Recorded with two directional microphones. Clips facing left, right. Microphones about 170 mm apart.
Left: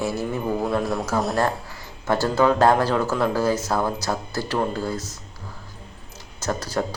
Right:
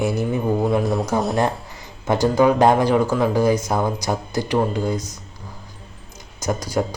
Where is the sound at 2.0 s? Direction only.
15° right (ahead or behind).